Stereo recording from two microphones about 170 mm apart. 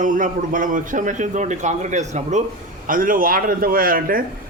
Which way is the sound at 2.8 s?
55° right (ahead or behind).